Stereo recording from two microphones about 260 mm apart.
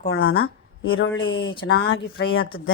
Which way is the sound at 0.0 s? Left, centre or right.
Left.